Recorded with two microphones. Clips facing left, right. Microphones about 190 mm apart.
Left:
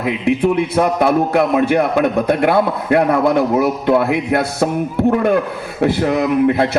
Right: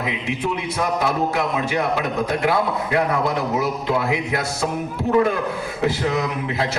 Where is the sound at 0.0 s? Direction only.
55° left (ahead or behind).